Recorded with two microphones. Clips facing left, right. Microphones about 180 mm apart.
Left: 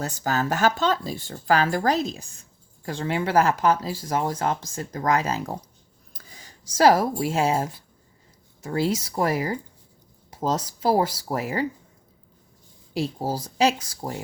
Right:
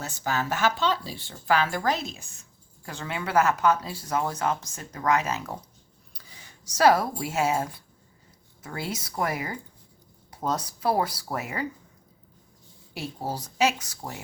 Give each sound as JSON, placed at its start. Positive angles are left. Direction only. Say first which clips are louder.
{"t": 0.0, "sound": "speech", "louder": "left 4 dB", "side_deg": 40}
{"t": 6.1, "sound": "a sound", "louder": "left 3 dB", "side_deg": 45}
{"t": 6.7, "sound": "speech", "louder": "left 3 dB", "side_deg": 30}
{"t": 13.1, "sound": "speech", "louder": "even", "side_deg": 30}